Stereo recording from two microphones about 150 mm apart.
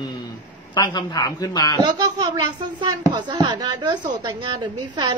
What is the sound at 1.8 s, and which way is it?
A woman's voice, 30° right (ahead or behind).